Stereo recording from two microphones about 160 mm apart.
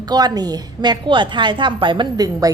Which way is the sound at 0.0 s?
25° right (ahead or behind).